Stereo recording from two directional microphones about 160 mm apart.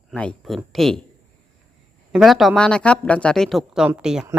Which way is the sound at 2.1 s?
Centre (ahead or behind).